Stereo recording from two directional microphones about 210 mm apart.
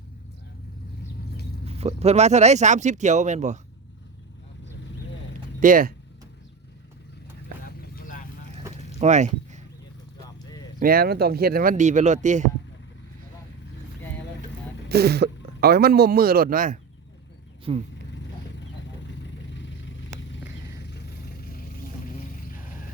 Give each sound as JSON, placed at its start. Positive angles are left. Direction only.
{"t": 1.6, "sound": "speech", "side_deg": -30}
{"t": 5.5, "sound": "speech", "side_deg": -40}
{"t": 7.6, "sound": "vehicle", "side_deg": 40}
{"t": 9.0, "sound": "a sound", "side_deg": -35}
{"t": 10.2, "sound": "clip-clop", "side_deg": 15}
{"t": 10.8, "sound": "speech", "side_deg": -45}
{"t": 14.8, "sound": "speech", "side_deg": -50}
{"t": 17.7, "sound": "speech", "side_deg": -25}
{"t": 18.1, "sound": "vehicle", "side_deg": 60}
{"t": 20.8, "sound": "vehicle", "side_deg": 50}